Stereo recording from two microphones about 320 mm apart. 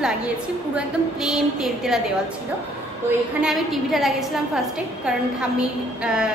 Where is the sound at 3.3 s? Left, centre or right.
Centre.